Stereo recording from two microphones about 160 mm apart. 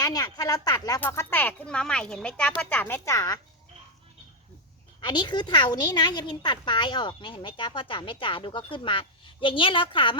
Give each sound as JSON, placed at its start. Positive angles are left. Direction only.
{"t": 0.0, "sound": "speech", "side_deg": 25}
{"t": 4.9, "sound": "a woman's voice", "side_deg": 30}